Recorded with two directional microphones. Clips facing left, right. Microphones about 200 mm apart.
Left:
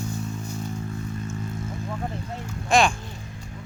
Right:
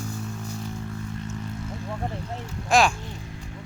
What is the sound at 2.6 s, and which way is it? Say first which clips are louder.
Speech: even; 5° right (ahead or behind).